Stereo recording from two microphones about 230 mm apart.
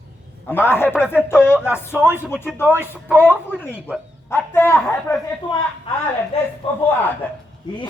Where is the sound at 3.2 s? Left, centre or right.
Centre.